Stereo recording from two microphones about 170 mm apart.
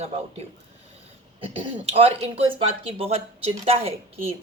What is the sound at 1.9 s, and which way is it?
Speech, 35° right (ahead or behind).